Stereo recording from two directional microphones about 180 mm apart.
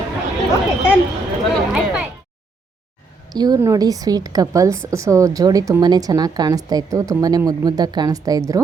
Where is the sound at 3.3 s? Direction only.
20° right (ahead or behind).